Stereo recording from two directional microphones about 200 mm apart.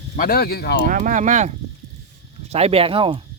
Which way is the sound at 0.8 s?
40° right (ahead or behind).